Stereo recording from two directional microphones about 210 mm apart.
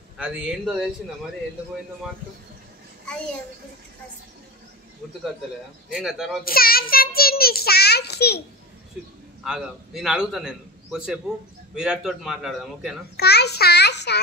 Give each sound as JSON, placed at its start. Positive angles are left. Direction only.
{"t": 0.2, "sound": "a man's voice", "side_deg": -5}
{"t": 5.9, "sound": "a man's voice", "side_deg": -5}
{"t": 6.4, "sound": "a child's voice", "side_deg": 45}
{"t": 9.4, "sound": "a man's voice", "side_deg": 0}
{"t": 13.1, "sound": "a child's voice", "side_deg": 50}